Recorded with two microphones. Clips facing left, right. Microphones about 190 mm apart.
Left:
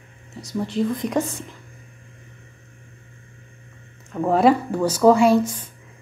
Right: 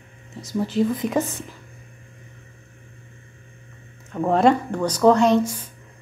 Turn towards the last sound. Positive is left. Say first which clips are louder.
# right 1 dB
turn(degrees=-10)  # may be behind; listen again after turning